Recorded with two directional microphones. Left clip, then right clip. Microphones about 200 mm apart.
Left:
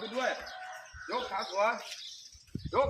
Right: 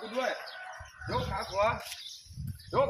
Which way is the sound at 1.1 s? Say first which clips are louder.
Right 1 dB; 10° left (ahead or behind).